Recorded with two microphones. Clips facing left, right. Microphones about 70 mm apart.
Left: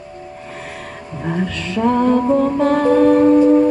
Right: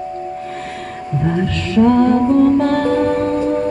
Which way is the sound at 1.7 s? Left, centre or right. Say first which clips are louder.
Right 3 dB; centre.